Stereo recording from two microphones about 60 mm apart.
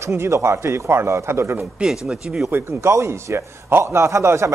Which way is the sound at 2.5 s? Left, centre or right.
Right.